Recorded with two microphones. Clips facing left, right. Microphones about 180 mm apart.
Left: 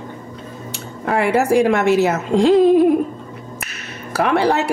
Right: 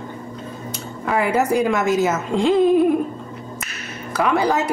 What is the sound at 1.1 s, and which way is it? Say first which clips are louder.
Speech: left 3 dB; 75° left (ahead or behind).